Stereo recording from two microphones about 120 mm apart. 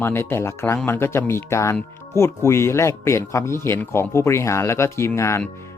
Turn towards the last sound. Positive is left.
turn(degrees=25)  # may be behind; listen again after turning